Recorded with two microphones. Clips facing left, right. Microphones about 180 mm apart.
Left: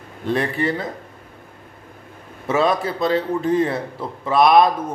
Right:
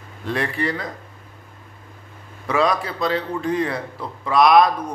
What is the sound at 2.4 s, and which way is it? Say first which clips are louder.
A man's voice: left 2 dB; 25° left (ahead or behind).